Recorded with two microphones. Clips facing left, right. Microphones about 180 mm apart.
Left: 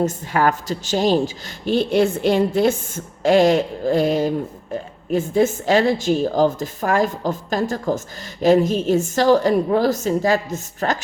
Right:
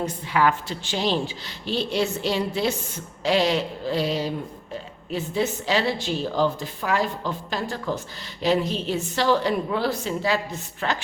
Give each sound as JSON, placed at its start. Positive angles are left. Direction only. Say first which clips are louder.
{"t": 0.0, "sound": "a woman's voice", "louder": "left 4 dB", "side_deg": 45}